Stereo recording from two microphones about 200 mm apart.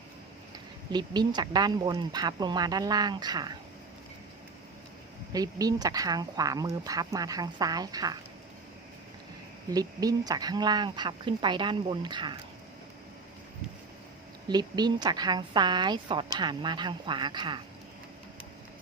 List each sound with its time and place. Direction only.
0.9 s a woman's voice: 20° right (ahead or behind)
5.3 s a woman's voice: 20° right (ahead or behind)
9.7 s a woman's voice: 20° right (ahead or behind)
14.4 s a woman's voice: 20° right (ahead or behind)